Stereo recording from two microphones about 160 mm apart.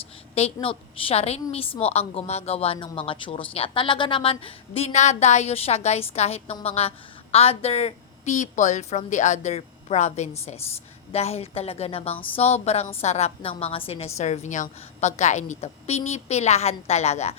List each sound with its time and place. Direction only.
0.3 s a woman's voice: 40° left (ahead or behind)